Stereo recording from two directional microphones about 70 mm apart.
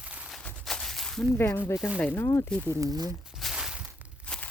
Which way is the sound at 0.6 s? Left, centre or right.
Centre.